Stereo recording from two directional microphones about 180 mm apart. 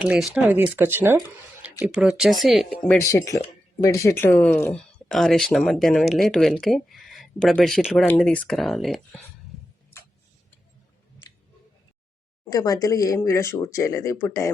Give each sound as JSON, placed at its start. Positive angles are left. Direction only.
{"t": 0.0, "sound": "speech", "side_deg": -5}
{"t": 12.5, "sound": "speech", "side_deg": 20}